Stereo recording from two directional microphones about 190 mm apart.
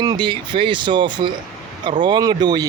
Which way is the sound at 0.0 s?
25° right (ahead or behind).